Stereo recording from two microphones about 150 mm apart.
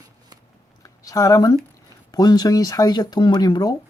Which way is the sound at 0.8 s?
20° left (ahead or behind).